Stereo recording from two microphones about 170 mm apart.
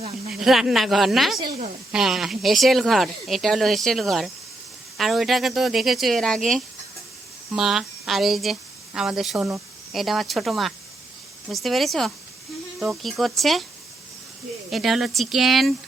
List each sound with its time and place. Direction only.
0.3 s speech: 5° right (ahead or behind)
1.4 s a woman's voice: 50° right (ahead or behind)
1.9 s speech: centre (ahead or behind)
14.7 s speech: centre (ahead or behind)